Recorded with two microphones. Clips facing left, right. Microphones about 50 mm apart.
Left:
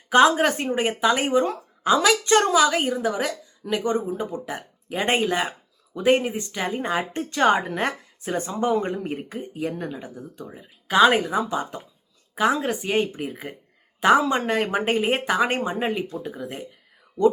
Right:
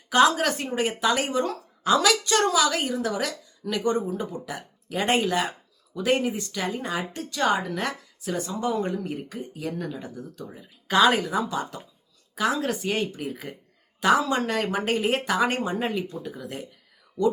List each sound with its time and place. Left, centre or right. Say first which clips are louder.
0.1 s speech: left 3 dB; left